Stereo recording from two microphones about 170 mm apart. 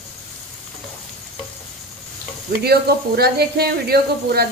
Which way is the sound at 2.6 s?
70° right (ahead or behind).